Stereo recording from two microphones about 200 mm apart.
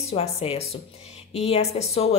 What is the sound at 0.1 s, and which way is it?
A woman's voice, 30° left (ahead or behind).